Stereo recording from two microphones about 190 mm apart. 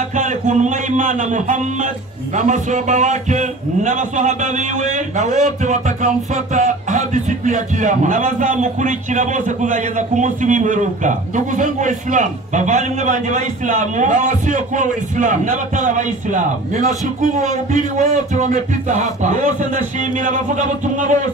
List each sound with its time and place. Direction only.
0.1 s a man's voice: 40° right (ahead or behind)
17.9 s a man's voice: 40° right (ahead or behind)